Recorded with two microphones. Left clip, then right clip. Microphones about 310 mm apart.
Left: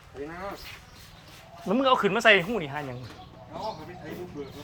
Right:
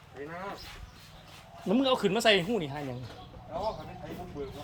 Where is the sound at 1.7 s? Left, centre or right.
Centre.